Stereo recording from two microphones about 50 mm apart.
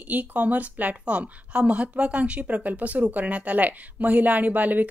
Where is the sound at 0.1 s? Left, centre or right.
Right.